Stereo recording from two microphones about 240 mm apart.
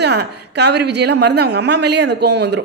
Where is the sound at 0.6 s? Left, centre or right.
Right.